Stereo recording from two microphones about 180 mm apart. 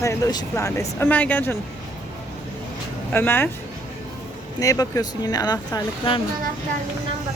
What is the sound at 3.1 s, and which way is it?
Speech, 10° left (ahead or behind).